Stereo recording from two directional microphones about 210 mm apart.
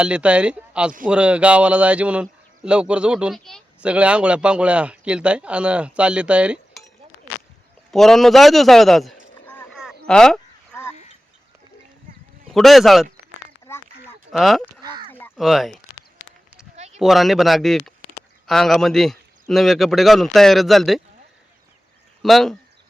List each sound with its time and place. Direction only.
0.0 s speech: 5° right (ahead or behind)
7.9 s speech: centre (ahead or behind)
10.1 s a sound: 5° left (ahead or behind)
12.5 s speech: centre (ahead or behind)
13.7 s a sound: 10° left (ahead or behind)
14.3 s speech: centre (ahead or behind)
16.7 s a sound: 30° right (ahead or behind)
17.0 s speech: centre (ahead or behind)
22.2 s speech: centre (ahead or behind)